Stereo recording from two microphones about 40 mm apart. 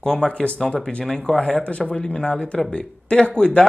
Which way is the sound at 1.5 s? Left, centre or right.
Left.